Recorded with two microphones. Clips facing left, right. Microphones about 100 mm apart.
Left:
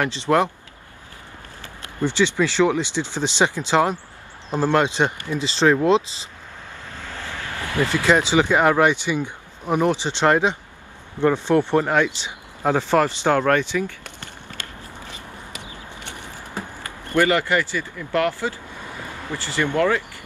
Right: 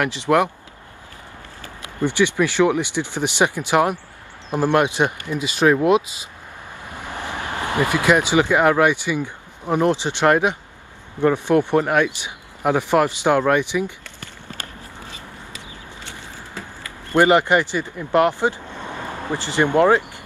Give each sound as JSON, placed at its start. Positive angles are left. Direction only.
{"t": 0.0, "sound": "speech", "side_deg": -15}
{"t": 1.8, "sound": "speech", "side_deg": -15}
{"t": 6.9, "sound": "vehicle", "side_deg": -15}
{"t": 8.5, "sound": "speech", "side_deg": -15}
{"t": 9.0, "sound": "speech", "side_deg": 20}
{"t": 9.8, "sound": "speech", "side_deg": -15}
{"t": 17.1, "sound": "speech", "side_deg": -20}